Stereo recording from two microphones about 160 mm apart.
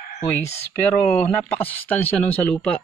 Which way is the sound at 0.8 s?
10° left (ahead or behind).